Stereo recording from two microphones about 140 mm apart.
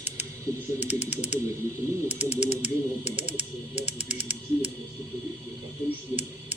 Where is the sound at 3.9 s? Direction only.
55° left (ahead or behind).